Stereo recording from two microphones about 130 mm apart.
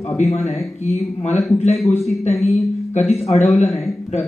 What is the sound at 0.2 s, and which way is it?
Speech, 55° left (ahead or behind).